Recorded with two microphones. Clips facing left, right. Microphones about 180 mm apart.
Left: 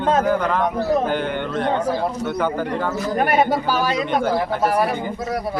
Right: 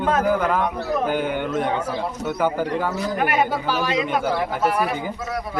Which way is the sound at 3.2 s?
40° left (ahead or behind).